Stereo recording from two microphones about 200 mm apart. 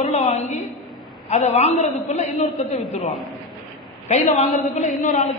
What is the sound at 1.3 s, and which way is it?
A man's voice, 35° left (ahead or behind).